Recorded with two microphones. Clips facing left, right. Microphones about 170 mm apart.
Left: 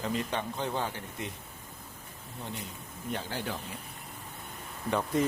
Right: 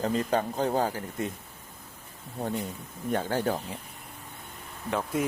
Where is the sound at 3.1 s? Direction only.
50° right (ahead or behind).